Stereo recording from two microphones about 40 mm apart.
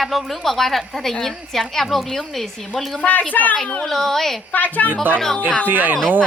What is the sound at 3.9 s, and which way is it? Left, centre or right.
Speech, centre.